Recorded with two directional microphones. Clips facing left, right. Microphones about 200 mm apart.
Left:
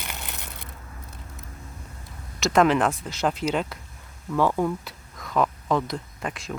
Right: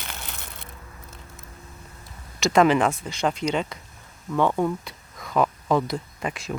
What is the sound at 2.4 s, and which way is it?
Speech, centre (ahead or behind).